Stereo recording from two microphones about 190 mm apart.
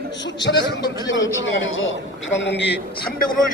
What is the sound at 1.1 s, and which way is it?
Speech, 85° left.